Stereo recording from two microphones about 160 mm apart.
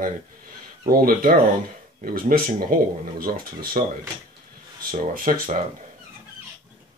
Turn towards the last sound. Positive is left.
turn(degrees=-55)  # may be behind; listen again after turning